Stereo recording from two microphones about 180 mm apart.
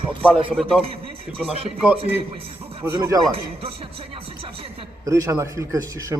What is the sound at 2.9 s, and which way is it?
Speech, 20° right (ahead or behind).